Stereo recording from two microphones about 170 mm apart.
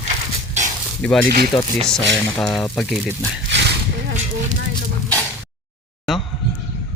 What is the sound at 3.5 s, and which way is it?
Horse, 80° right.